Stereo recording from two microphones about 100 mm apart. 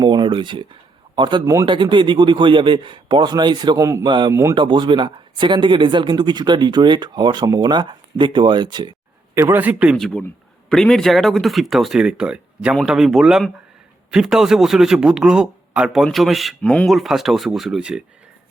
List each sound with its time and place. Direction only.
0.0 s a sound: 50° right (ahead or behind)
1.6 s speech: 55° right (ahead or behind)
3.8 s a man's voice: 30° right (ahead or behind)
4.0 s speech: 50° right (ahead or behind)
4.3 s speech: 30° right (ahead or behind)
4.5 s speech: 55° right (ahead or behind)
9.3 s speech: 25° right (ahead or behind)
10.0 s speech: 10° left (ahead or behind); by 18.0 s 10° right (ahead or behind)